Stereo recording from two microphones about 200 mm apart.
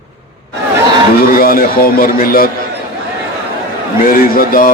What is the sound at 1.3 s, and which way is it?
Speech, 45° left (ahead or behind).